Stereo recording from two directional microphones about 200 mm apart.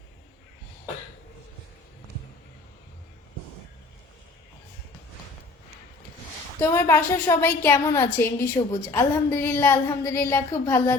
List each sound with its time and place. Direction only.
6.6 s a woman's voice: 15° left (ahead or behind)
8.6 s a woman's voice: 25° left (ahead or behind)
8.9 s a woman's voice: 10° left (ahead or behind)